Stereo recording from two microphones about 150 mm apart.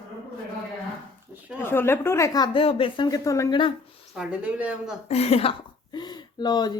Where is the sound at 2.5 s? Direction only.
35° left (ahead or behind).